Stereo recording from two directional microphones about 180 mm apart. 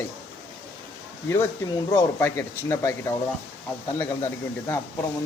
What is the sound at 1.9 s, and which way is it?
Speech, 15° left (ahead or behind).